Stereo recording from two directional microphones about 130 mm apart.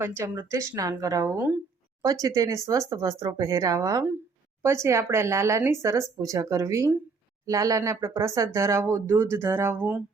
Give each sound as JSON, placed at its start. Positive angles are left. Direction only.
{"t": 0.0, "sound": "speech", "side_deg": -20}